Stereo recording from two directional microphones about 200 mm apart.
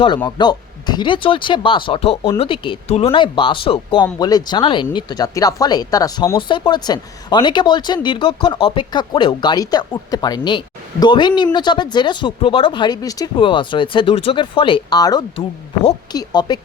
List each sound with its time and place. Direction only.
0.3 s speech: 20° left (ahead or behind)